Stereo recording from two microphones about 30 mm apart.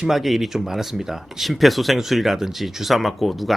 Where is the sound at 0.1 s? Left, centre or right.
Centre.